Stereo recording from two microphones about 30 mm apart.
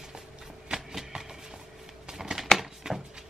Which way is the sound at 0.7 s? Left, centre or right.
Right.